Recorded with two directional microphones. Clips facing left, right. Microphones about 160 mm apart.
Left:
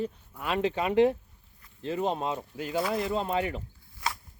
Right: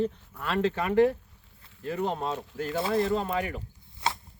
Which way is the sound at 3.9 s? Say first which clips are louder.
Right 3 dB; 25° right (ahead or behind).